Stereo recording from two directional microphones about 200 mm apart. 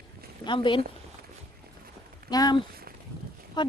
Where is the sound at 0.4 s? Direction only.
25° left (ahead or behind).